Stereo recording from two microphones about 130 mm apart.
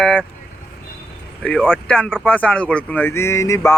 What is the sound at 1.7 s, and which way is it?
Speech, 10° left (ahead or behind).